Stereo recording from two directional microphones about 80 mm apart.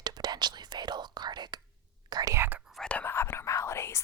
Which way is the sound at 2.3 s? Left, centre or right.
Right.